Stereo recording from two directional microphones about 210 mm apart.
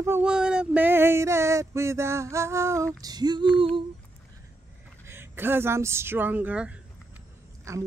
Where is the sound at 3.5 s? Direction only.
25° right (ahead or behind).